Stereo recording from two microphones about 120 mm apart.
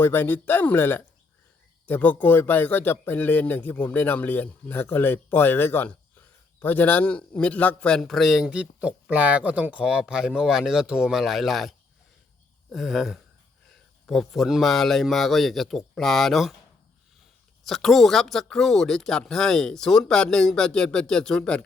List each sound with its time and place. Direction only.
0.0 s speech: 20° left (ahead or behind); by 11.7 s centre (ahead or behind)
12.7 s speech: centre (ahead or behind)
17.7 s speech: centre (ahead or behind)